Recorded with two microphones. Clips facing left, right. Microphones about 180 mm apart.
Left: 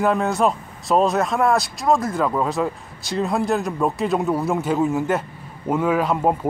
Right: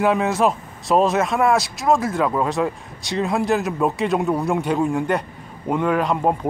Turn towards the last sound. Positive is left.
turn(degrees=5)  # may be behind; listen again after turning